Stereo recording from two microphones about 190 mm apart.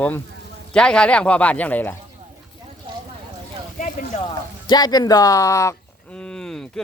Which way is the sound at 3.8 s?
40° left (ahead or behind).